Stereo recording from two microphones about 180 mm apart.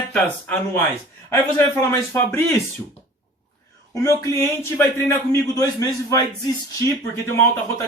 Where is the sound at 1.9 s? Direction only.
15° left (ahead or behind).